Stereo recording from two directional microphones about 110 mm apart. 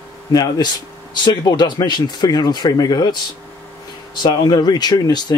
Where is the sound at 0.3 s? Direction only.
35° left (ahead or behind).